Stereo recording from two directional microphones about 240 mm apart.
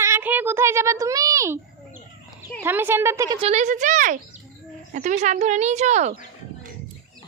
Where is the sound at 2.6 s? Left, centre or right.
Centre; by 6.2 s right.